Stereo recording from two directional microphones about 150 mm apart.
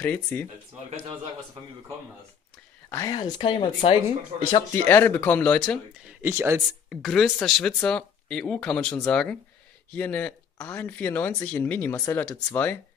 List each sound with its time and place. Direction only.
0.0 s speech: 10° left (ahead or behind)
3.1 s speech: 30° left (ahead or behind)
4.8 s speech: 15° left (ahead or behind)
6.0 s speech: 15° right (ahead or behind)
6.9 s speech: centre (ahead or behind)